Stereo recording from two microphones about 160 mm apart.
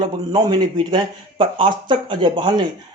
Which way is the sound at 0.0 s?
25° right (ahead or behind).